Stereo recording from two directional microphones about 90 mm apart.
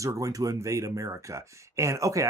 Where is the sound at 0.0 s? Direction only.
40° right (ahead or behind).